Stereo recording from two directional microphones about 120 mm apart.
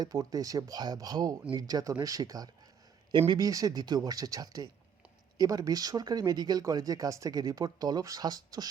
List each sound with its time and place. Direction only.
0.0 s speech: 30° right (ahead or behind)
3.1 s speech: 40° right (ahead or behind)
3.3 s speech: 30° right (ahead or behind)